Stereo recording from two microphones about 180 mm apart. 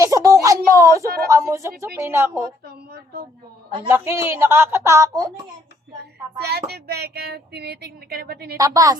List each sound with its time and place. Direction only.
0.0 s a sound: 20° right (ahead or behind)
1.3 s speech: 15° right (ahead or behind)
2.6 s a woman's voice: 65° right (ahead or behind)
3.8 s speech: 15° right (ahead or behind)
6.4 s speech: 65° right (ahead or behind)
8.5 s a woman's voice: 20° right (ahead or behind)